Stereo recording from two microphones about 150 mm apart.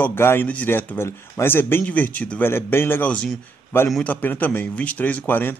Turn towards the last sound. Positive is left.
turn(degrees=15)  # may be behind; listen again after turning